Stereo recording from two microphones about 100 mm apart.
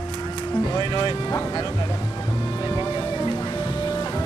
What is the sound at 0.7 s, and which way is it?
Speech, 45° left (ahead or behind).